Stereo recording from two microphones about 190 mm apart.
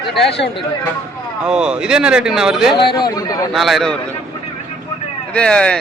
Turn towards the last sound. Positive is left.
turn(degrees=5)  # may be behind; listen again after turning